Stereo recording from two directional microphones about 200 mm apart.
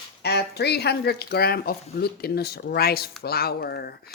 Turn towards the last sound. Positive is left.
turn(degrees=50)  # may be behind; listen again after turning